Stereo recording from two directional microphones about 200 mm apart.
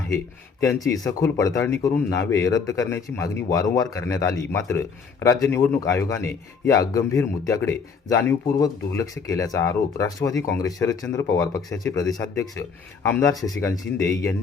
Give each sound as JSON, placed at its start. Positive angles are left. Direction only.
{"t": 0.6, "sound": "speech", "side_deg": 15}